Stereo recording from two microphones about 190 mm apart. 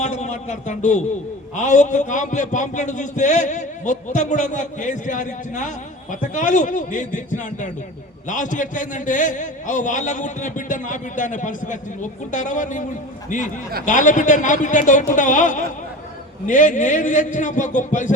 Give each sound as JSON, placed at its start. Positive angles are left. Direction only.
{"t": 0.0, "sound": "a man's voice", "side_deg": 40}
{"t": 13.8, "sound": "a man's voice", "side_deg": 40}